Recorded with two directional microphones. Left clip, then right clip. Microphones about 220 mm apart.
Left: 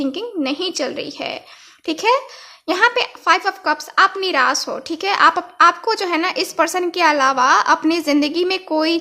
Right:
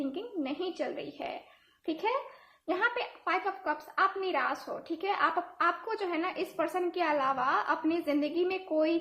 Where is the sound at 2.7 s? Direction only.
40° left (ahead or behind).